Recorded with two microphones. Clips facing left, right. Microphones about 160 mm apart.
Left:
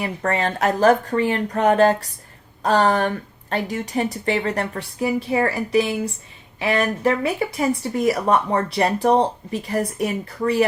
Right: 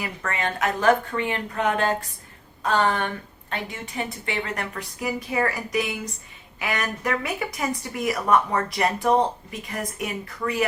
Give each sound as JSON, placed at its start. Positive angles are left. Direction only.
{"t": 0.0, "sound": "speech", "side_deg": 35}